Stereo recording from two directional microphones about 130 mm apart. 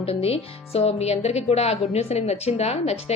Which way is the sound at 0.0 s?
50° left (ahead or behind).